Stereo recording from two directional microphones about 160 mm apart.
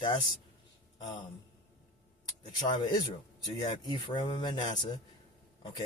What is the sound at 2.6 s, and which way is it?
Speech, 25° left (ahead or behind).